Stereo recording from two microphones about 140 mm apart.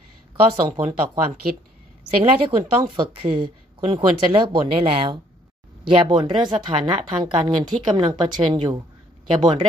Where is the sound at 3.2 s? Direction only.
35° right (ahead or behind).